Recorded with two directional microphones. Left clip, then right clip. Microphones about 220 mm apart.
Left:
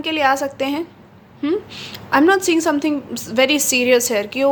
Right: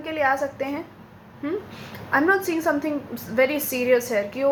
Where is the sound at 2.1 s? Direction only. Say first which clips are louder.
Left 6 dB; 40° left (ahead or behind).